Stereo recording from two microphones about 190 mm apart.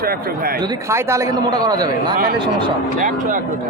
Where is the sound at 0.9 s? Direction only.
15° right (ahead or behind).